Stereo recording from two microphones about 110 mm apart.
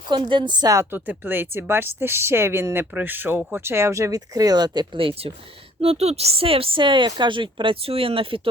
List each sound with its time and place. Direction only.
0.3 s a woman's voice: 45° right (ahead or behind)
0.9 s speech: 20° right (ahead or behind); by 5.3 s 55° right (ahead or behind)
5.8 s a woman's voice: 65° right (ahead or behind)